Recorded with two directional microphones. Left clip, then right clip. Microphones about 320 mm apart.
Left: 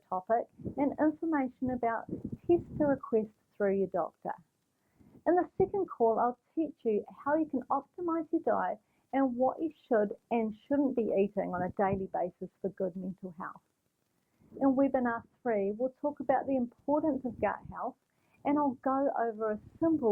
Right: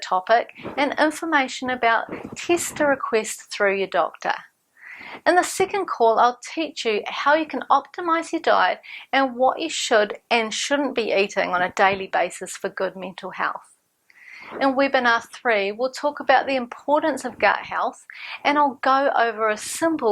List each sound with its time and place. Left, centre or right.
0.3 s speech: centre
6.2 s speech: centre
9.4 s a woman's voice: right
9.6 s speech: centre